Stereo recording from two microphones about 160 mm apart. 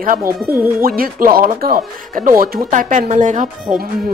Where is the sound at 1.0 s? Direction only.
65° right (ahead or behind).